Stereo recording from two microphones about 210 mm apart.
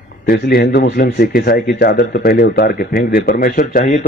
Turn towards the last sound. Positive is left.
turn(degrees=45)  # may be behind; listen again after turning